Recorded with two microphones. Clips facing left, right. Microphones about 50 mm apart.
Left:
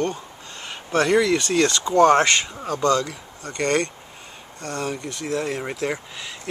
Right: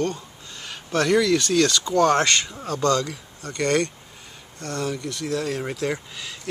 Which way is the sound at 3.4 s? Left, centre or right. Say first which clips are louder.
Even; left.